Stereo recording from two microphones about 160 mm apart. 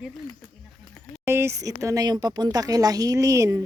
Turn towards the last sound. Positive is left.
turn(degrees=-20)  # may be behind; listen again after turning